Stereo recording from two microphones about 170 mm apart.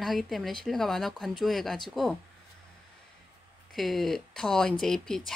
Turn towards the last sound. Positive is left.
turn(degrees=5)  # may be behind; listen again after turning